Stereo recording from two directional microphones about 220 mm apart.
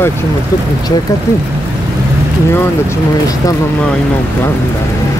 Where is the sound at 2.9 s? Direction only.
15° left (ahead or behind).